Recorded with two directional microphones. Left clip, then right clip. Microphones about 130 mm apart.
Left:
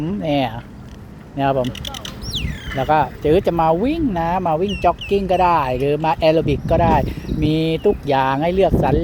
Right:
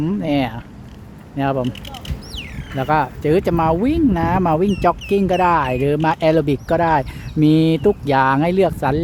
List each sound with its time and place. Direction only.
0.2 s speech: 30° right (ahead or behind)
1.6 s a sound: 25° left (ahead or behind)
2.7 s speech: 35° right (ahead or behind)